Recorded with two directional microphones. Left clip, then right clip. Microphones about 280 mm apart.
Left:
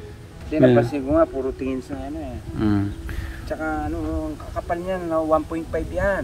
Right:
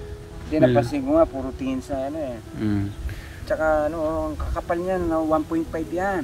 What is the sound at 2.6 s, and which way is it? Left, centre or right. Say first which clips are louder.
Speech: left 4 dB; centre.